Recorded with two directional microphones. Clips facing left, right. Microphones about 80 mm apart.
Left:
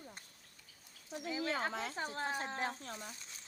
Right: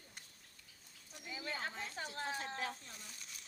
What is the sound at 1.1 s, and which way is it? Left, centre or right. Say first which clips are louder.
Speech: left 8 dB; left.